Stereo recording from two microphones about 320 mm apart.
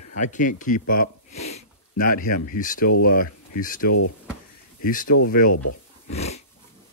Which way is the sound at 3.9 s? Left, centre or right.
Left.